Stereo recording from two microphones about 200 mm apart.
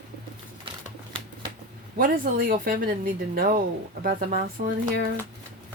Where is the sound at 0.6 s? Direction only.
25° right (ahead or behind).